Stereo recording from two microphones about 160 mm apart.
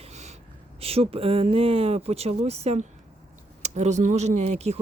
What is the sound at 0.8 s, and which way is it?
Speech, 40° right (ahead or behind).